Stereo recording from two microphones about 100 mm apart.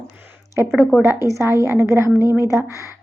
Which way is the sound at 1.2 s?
30° right (ahead or behind).